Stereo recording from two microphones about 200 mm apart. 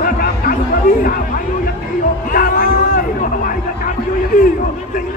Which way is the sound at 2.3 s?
45° left (ahead or behind).